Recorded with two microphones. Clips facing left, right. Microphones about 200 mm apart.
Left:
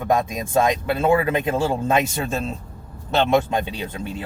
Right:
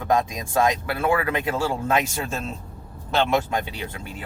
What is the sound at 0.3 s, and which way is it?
Speech, 20° left (ahead or behind).